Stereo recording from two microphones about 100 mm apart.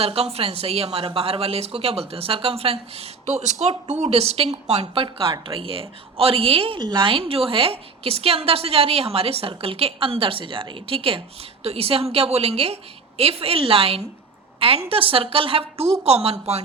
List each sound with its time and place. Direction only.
0.0 s speech: 80° right
5.5 s a woman's voice: 65° right (ahead or behind)
11.6 s a woman's voice: 85° right; by 15.9 s 65° right (ahead or behind)
16.0 s speech: 90° right